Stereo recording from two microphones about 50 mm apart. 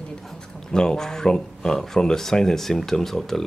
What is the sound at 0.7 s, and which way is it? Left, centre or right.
Speech, centre.